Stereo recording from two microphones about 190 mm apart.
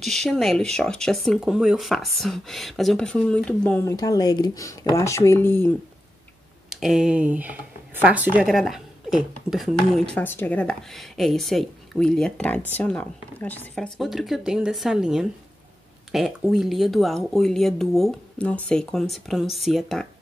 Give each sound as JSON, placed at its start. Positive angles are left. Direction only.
{"t": 0.0, "sound": "speech", "side_deg": 0}
{"t": 3.8, "sound": "speech", "side_deg": 20}
{"t": 6.7, "sound": "speech", "side_deg": 0}